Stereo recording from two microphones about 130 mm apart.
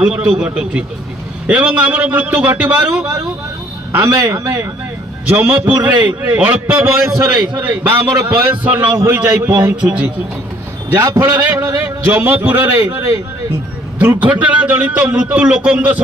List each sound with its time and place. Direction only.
0.0 s a man's voice: 10° right (ahead or behind)
3.9 s a man's voice: 20° right (ahead or behind)
11.0 s a man's voice: 25° right (ahead or behind)